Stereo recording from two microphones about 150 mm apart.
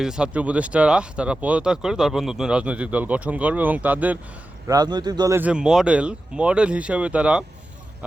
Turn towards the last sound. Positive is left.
turn(degrees=-5)  # may be behind; listen again after turning